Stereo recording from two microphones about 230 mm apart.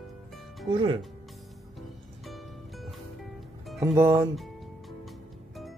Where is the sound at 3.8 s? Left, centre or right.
Centre.